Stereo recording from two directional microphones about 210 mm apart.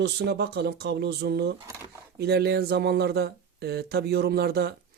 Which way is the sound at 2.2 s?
50° right (ahead or behind).